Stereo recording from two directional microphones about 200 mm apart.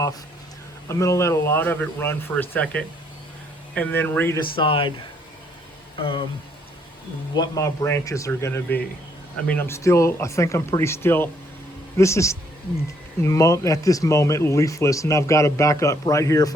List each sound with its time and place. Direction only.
0.9 s speech: 15° left (ahead or behind)
4.5 s speech: 25° left (ahead or behind)
6.0 s speech: 25° left (ahead or behind)
7.3 s speech: 15° left (ahead or behind)